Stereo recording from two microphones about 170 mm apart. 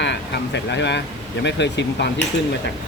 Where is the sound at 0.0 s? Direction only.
90° left.